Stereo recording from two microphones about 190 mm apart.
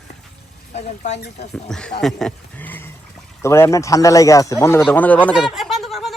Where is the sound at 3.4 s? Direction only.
15° left (ahead or behind).